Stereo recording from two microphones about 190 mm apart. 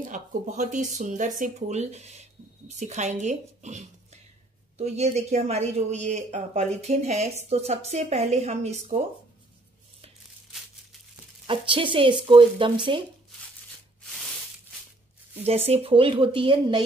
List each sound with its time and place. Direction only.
0.1 s speech: 40° right (ahead or behind)
11.4 s speech: 25° right (ahead or behind)
15.4 s speech: 30° right (ahead or behind)